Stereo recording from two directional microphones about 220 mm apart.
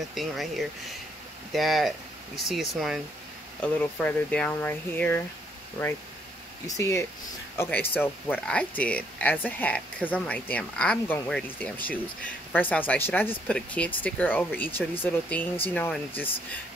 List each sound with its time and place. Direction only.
0.0 s speech: centre (ahead or behind)
6.8 s speech: 15° left (ahead or behind)